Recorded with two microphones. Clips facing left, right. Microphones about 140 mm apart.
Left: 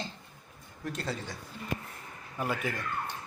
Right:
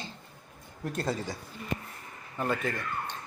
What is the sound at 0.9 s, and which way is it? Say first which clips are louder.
Speech: right 4 dB; 45° right (ahead or behind).